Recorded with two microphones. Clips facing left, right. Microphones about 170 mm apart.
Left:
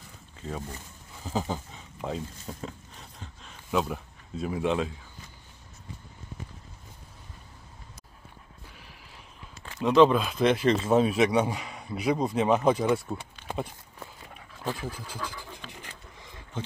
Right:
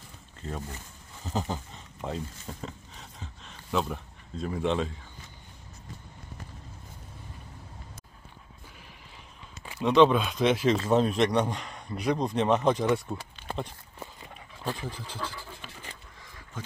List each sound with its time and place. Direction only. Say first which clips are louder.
0.4 s speech: left 1 dB; centre (ahead or behind)
9.8 s speech: left 1 dB; centre (ahead or behind)
13.9 s dog: right 2 dB; centre (ahead or behind)
14.7 s speech: left 1 dB; 5° left (ahead or behind)
15.2 s a sound: even; 15° left (ahead or behind)
16.6 s a sound: left 5 dB; 25° left (ahead or behind)